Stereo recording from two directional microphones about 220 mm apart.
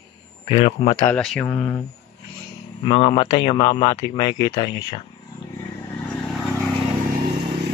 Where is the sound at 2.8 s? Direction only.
25° left (ahead or behind).